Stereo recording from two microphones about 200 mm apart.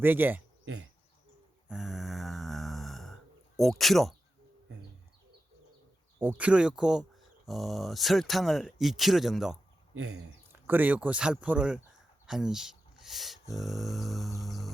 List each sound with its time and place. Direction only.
0.0 s speech: 10° right (ahead or behind)
0.6 s insect: 90° right
1.6 s snoring: 5° right (ahead or behind)
3.6 s speech: centre (ahead or behind)
6.1 s speech: 10° right (ahead or behind)
9.9 s speech: 90° right
10.5 s speech: 10° right (ahead or behind)